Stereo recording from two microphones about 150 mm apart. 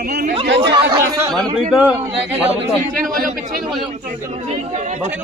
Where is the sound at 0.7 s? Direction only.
25° right (ahead or behind).